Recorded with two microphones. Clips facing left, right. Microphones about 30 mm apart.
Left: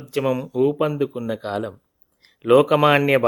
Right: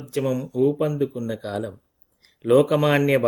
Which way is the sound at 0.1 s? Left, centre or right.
Left.